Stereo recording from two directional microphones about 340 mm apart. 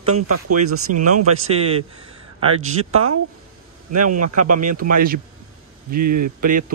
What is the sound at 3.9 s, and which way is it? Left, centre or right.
Speech, right.